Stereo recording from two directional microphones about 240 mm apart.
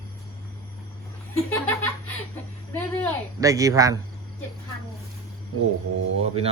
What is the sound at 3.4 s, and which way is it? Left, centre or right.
Speech, centre.